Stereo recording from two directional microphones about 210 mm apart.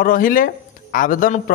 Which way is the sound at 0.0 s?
40° left (ahead or behind).